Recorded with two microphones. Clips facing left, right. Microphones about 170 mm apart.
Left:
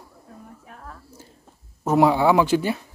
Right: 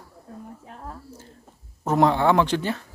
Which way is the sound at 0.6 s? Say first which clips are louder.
Right 3 dB; 30° right (ahead or behind).